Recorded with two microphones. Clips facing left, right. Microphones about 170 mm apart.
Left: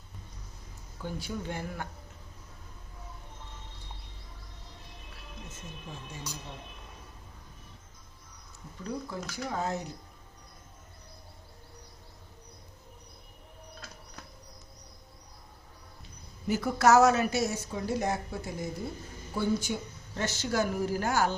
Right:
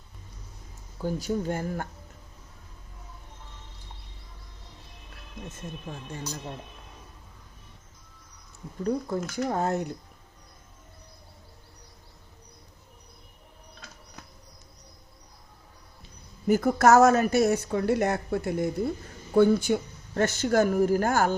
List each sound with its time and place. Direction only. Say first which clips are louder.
1.0 s speech: right 8 dB; 40° right (ahead or behind)
8.8 s speech: right 9 dB; 50° right (ahead or behind)
16.5 s speech: right 4 dB; 50° right (ahead or behind)